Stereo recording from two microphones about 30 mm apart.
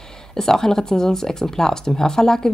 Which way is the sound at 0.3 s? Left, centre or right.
Centre.